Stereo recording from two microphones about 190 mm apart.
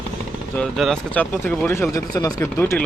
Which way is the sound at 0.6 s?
5° left (ahead or behind).